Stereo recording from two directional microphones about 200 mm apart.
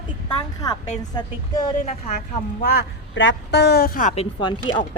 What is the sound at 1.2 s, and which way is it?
Speech, 20° left (ahead or behind).